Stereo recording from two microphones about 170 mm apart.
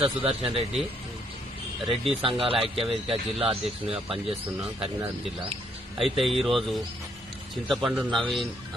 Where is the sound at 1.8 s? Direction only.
35° right (ahead or behind).